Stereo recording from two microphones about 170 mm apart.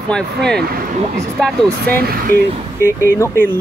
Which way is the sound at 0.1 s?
5° left (ahead or behind).